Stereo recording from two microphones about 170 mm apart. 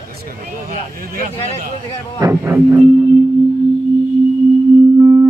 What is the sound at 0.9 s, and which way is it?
Speech, 55° right (ahead or behind).